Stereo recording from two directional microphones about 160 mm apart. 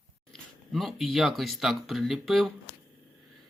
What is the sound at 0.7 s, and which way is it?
Speech, centre (ahead or behind).